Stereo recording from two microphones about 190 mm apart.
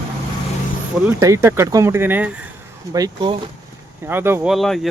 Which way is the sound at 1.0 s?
15° right (ahead or behind).